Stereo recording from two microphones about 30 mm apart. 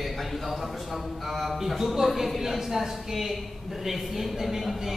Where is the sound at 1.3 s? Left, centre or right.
Centre.